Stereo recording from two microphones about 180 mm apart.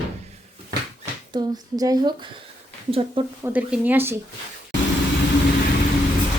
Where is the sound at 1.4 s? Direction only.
20° right (ahead or behind).